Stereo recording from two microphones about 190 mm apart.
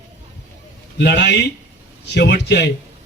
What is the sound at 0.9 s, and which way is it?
A man's voice, 60° left (ahead or behind).